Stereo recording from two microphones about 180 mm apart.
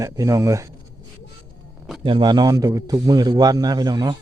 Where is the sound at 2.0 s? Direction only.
25° right (ahead or behind).